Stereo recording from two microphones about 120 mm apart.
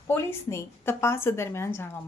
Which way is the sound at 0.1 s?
20° left (ahead or behind).